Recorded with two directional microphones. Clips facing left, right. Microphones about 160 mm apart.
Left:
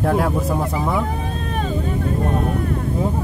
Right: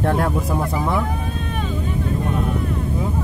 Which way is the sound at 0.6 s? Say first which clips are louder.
Even; 15° left (ahead or behind).